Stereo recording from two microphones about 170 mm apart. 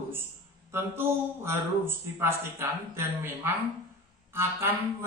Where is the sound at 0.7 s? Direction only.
15° right (ahead or behind).